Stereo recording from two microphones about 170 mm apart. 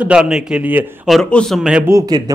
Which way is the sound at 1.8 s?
20° right (ahead or behind).